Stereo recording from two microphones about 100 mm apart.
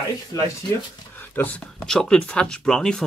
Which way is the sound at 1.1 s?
20° left (ahead or behind).